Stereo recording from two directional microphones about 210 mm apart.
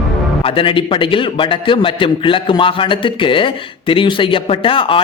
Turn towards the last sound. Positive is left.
turn(degrees=25)  # may be behind; listen again after turning